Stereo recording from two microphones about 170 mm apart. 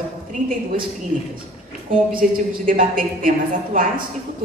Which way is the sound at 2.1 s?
50° right (ahead or behind).